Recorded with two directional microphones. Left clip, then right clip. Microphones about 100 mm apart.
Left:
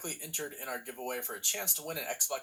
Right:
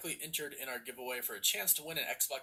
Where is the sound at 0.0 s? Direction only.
25° right (ahead or behind).